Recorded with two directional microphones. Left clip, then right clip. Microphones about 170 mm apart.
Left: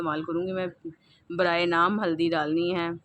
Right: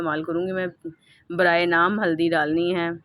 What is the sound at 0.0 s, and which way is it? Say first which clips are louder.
Speech: right 4 dB; 20° right (ahead or behind).